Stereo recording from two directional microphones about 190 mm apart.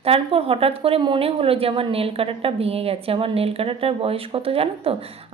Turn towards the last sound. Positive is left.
turn(degrees=-30)  # may be behind; listen again after turning